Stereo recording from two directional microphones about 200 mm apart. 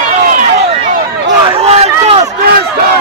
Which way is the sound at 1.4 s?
30° right (ahead or behind).